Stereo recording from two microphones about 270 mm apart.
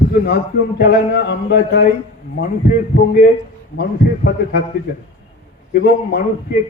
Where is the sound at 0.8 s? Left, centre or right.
Left.